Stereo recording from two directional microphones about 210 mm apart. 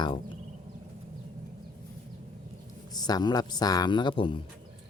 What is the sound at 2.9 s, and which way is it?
Speech, 20° left (ahead or behind).